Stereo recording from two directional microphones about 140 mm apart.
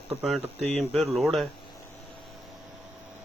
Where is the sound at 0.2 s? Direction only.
Centre (ahead or behind).